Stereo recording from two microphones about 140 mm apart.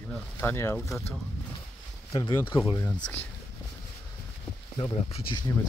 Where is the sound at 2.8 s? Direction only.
10° left (ahead or behind).